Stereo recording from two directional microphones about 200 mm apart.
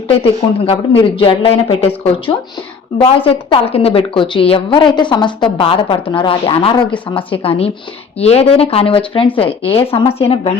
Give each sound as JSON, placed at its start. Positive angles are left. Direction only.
{"t": 0.6, "sound": "a woman's voice", "side_deg": 25}